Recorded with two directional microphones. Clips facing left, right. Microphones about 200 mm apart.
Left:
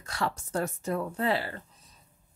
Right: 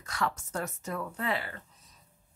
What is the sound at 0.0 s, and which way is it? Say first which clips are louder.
Speech: left 1 dB; 30° left (ahead or behind).